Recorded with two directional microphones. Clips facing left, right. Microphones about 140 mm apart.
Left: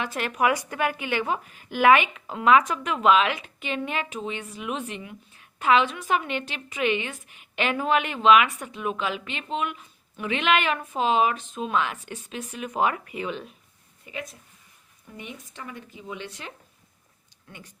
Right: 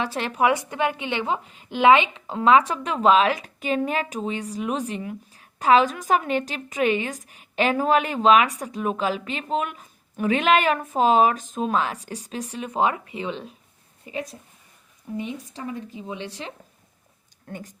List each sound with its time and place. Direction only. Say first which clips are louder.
0.0 s a woman's voice: right 2 dB; 30° right (ahead or behind)
17.4 s speech: right 10 dB; 45° right (ahead or behind)